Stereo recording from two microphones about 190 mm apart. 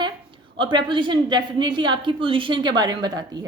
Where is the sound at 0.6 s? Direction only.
25° right (ahead or behind).